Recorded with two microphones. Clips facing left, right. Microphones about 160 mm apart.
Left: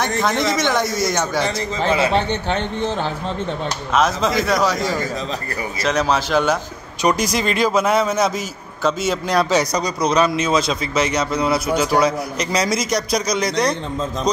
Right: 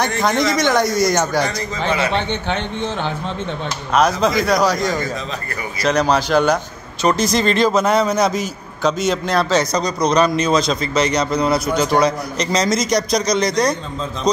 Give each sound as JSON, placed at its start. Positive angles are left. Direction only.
{"t": 0.2, "sound": "a man's voice", "side_deg": 0}
{"t": 1.8, "sound": "speech", "side_deg": 30}
{"t": 3.9, "sound": "a man's voice", "side_deg": 0}